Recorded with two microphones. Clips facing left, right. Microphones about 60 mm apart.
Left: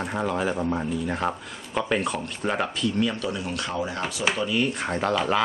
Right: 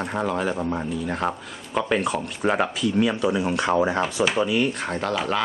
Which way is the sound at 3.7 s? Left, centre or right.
Right.